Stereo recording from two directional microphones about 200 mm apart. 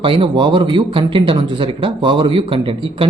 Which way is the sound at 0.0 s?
25° right (ahead or behind).